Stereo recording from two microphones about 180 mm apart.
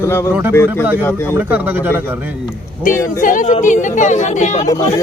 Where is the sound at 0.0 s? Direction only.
15° left (ahead or behind).